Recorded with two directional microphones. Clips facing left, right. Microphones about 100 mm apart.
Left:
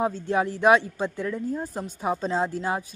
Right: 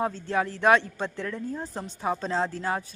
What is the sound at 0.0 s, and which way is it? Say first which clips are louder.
A woman's voice: left 3 dB; 15° left (ahead or behind).